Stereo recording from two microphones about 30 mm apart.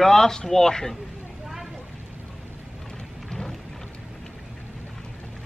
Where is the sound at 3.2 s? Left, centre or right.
Centre.